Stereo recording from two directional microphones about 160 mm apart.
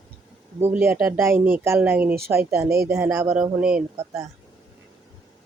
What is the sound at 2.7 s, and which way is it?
Speech, 80° right.